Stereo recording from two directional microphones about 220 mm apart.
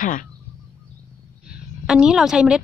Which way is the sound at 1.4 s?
5° right (ahead or behind).